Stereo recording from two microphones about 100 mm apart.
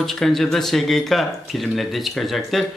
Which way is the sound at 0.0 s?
Centre (ahead or behind).